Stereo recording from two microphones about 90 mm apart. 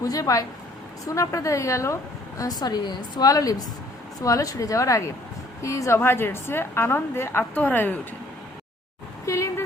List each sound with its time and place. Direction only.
0.0 s a woman's voice: 40° left (ahead or behind)
2.4 s a woman's voice: 45° left (ahead or behind); by 7.9 s 20° left (ahead or behind)
9.2 s speech: 35° left (ahead or behind)